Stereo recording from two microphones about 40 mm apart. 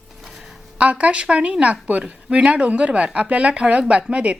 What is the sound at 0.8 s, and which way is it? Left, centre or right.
Speech, right.